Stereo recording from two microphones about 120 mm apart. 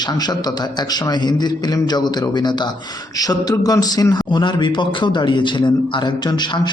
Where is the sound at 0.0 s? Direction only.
35° left (ahead or behind).